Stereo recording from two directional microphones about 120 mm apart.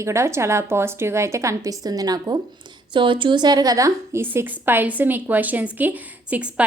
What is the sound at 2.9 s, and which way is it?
A woman's voice, 45° right (ahead or behind).